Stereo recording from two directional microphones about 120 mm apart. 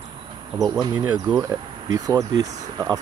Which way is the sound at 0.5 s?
30° right (ahead or behind).